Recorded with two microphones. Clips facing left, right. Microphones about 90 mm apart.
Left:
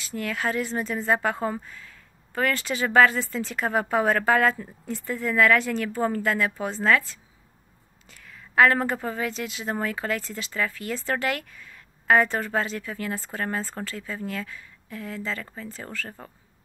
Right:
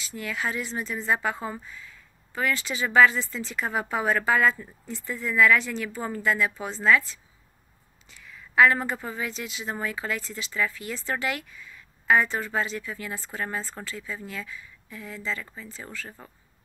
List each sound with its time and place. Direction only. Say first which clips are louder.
0.0 s a woman's voice: left 3 dB; 50° left (ahead or behind)